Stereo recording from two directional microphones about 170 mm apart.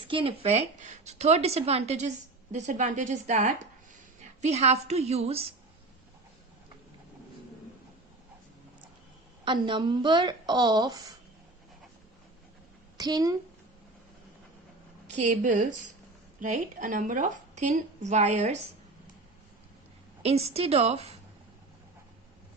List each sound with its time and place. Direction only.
0.1 s a woman's voice: 30° right (ahead or behind)
9.4 s a woman's voice: 30° right (ahead or behind)
13.0 s a woman's voice: 25° right (ahead or behind)
15.0 s a woman's voice: 45° right (ahead or behind)
20.2 s speech: 35° right (ahead or behind)